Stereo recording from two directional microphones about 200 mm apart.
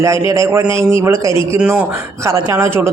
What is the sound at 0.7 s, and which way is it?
Speech, 25° left (ahead or behind).